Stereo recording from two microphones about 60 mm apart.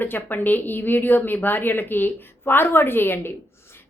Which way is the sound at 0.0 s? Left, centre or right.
Left.